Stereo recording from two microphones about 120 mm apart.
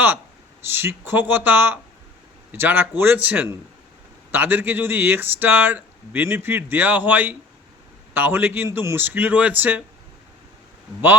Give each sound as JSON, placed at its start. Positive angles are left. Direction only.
{"t": 0.6, "sound": "speech", "side_deg": -20}